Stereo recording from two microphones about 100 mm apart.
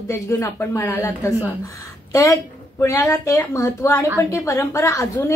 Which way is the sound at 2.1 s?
30° left (ahead or behind).